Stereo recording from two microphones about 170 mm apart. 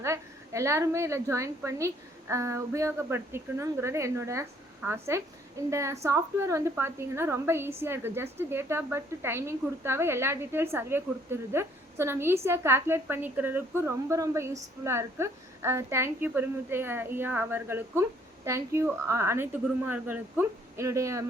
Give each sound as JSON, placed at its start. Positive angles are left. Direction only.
{"t": 0.0, "sound": "a woman's voice", "side_deg": -15}